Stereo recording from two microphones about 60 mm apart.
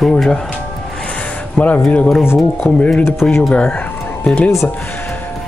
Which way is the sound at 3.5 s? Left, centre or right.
Left.